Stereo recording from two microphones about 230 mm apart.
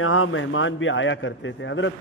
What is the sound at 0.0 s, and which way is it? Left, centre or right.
A man's voice, left.